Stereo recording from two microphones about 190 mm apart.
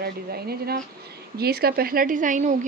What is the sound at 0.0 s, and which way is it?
Speech, 55° right (ahead or behind).